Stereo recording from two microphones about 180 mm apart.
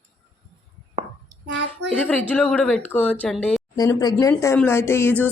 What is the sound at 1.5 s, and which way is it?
Speech, 80° right.